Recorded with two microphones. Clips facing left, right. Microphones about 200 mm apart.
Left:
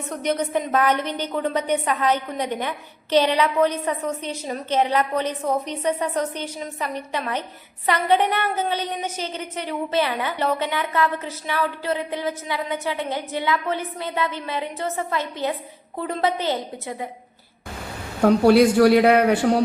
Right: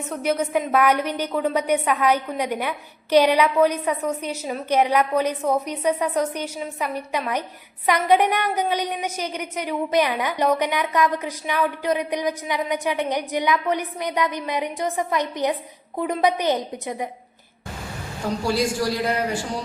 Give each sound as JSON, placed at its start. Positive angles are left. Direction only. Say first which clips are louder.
{"t": 0.1, "sound": "a woman's voice", "louder": "right 1 dB", "side_deg": -5}
{"t": 18.2, "sound": "a man's voice", "louder": "left 9 dB", "side_deg": 60}